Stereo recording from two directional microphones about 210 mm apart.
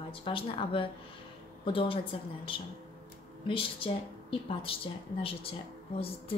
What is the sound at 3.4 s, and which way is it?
A woman's voice, 25° left (ahead or behind).